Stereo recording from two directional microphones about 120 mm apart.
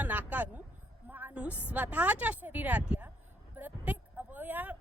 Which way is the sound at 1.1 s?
10° right (ahead or behind).